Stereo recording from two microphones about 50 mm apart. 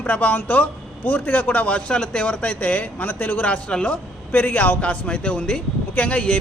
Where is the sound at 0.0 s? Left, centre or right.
Left.